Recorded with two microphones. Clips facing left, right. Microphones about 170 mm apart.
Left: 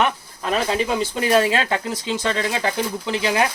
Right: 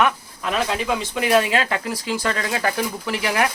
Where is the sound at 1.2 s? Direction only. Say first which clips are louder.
Even; 30° left (ahead or behind).